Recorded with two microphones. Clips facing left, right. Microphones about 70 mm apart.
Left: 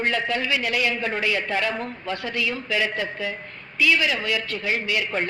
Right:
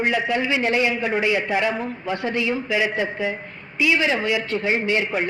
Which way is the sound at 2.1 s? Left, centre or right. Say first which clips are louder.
Right 4 dB; right.